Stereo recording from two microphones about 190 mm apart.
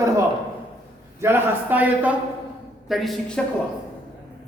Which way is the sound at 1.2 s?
10° right (ahead or behind).